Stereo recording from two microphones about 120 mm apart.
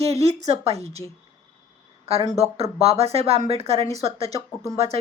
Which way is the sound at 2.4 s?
55° right (ahead or behind).